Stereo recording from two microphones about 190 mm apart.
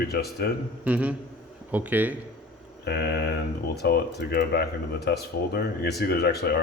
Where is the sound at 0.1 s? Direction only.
55° left (ahead or behind).